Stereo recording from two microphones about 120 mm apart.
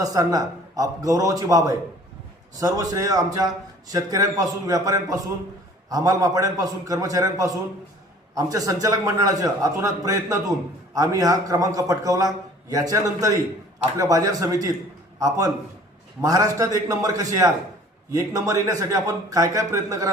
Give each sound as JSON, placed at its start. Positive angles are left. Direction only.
{"t": 0.0, "sound": "a man's voice", "side_deg": -30}